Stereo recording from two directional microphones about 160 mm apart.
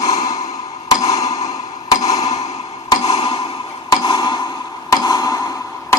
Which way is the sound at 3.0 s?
40° left (ahead or behind).